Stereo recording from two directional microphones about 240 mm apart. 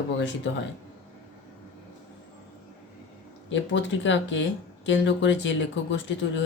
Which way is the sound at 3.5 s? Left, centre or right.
Left.